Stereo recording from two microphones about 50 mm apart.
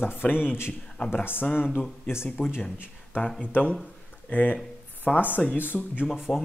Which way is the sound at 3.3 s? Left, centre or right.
Left.